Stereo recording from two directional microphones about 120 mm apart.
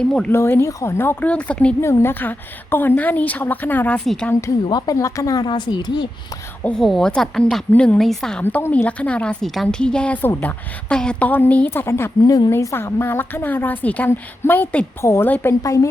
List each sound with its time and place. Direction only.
0.0 s a woman's voice: 5° left (ahead or behind)
0.3 s speech: 20° left (ahead or behind)
1.8 s a woman's voice: 20° left (ahead or behind)
4.0 s a woman's voice: centre (ahead or behind)
4.3 s speech: 25° left (ahead or behind)
6.7 s a woman's voice: 5° left (ahead or behind); by 12.1 s 20° left (ahead or behind)
12.2 s speech: 35° left (ahead or behind)
12.5 s a woman's voice: 20° left (ahead or behind)